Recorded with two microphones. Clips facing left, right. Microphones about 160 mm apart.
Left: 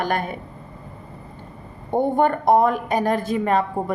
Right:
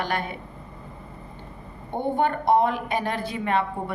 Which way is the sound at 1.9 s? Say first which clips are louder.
Left 5 dB; 45° left (ahead or behind).